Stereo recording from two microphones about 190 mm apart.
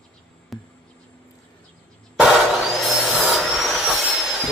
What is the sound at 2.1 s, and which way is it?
Vehicle, 5° right (ahead or behind).